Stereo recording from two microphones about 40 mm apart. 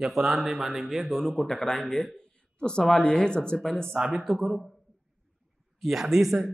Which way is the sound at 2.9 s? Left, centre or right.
Centre.